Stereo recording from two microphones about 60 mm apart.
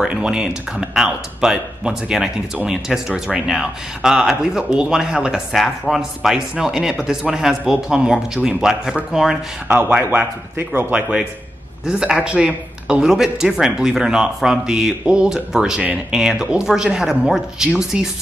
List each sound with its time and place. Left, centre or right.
0.1 s speech: centre
10.9 s a man's voice: centre
13.0 s speech: centre